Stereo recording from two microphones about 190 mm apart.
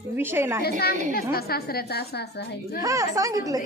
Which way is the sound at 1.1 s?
55° left (ahead or behind).